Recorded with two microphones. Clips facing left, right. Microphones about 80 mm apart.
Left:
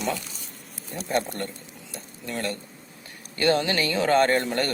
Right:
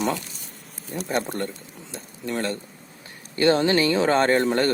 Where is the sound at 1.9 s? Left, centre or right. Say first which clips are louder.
Right 4 dB; right.